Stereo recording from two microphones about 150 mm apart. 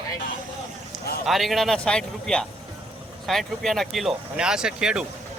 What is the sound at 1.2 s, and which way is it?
Speech, centre (ahead or behind).